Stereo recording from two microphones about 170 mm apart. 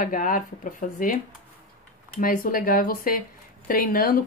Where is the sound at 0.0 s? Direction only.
55° left (ahead or behind).